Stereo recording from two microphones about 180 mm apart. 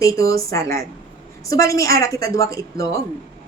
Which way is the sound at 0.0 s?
20° left (ahead or behind).